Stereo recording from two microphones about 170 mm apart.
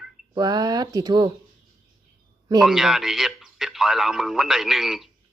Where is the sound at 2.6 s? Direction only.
5° right (ahead or behind).